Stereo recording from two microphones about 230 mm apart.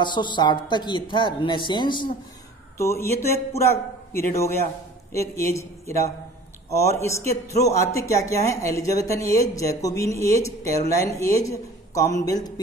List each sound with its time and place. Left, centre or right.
0.0 s speech: centre